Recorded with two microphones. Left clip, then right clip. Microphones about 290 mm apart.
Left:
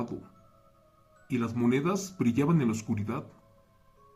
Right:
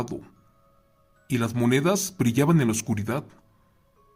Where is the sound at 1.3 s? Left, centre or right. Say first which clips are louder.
Right 5 dB; right.